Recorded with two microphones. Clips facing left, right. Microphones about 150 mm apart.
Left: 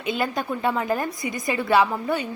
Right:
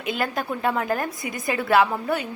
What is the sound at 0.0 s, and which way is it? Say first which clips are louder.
A woman's voice: left 1 dB; centre (ahead or behind).